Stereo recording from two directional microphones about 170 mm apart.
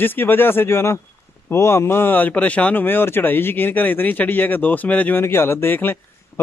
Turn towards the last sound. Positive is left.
turn(degrees=10)  # may be behind; listen again after turning